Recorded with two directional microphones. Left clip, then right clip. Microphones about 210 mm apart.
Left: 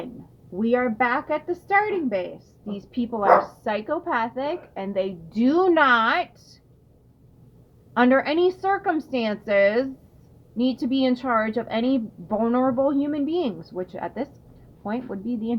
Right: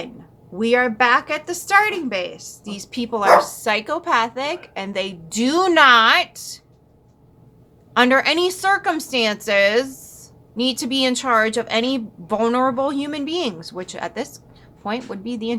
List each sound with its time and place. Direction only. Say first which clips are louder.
0.6 s a woman's voice: right 5 dB; 15° right (ahead or behind)
7.9 s a woman's voice: right 4 dB; 10° right (ahead or behind)